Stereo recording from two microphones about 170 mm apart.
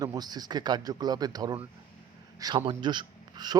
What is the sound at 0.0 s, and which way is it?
Speech, 25° right (ahead or behind).